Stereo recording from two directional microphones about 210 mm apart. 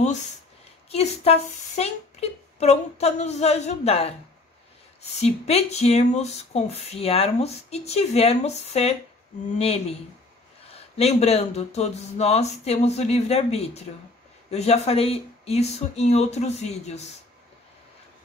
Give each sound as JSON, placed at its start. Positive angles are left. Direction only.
{"t": 0.8, "sound": "speech", "side_deg": 30}
{"t": 5.2, "sound": "speech", "side_deg": 30}